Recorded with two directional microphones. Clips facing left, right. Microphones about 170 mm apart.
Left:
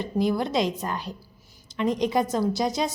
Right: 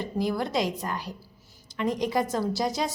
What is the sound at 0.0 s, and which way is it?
A woman's voice, 20° left (ahead or behind).